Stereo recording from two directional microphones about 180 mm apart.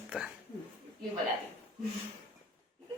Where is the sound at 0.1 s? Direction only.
5° right (ahead or behind).